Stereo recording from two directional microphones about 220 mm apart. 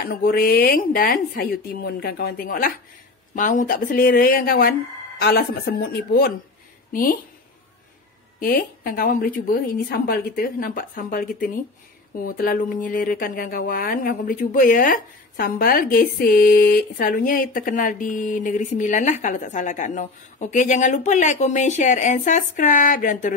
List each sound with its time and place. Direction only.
0.0 s speech: 45° left (ahead or behind)
8.4 s speech: 40° left (ahead or behind)